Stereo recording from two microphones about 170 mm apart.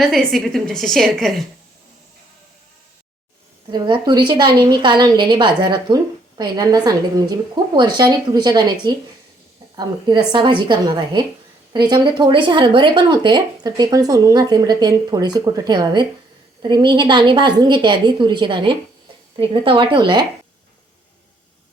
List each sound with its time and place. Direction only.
0.0 s a woman's voice: centre (ahead or behind)
3.7 s a woman's voice: 25° right (ahead or behind)